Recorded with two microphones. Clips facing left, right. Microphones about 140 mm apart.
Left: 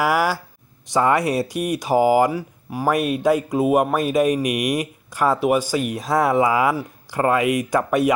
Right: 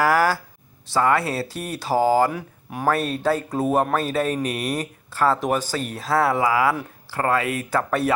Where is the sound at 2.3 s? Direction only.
Centre (ahead or behind).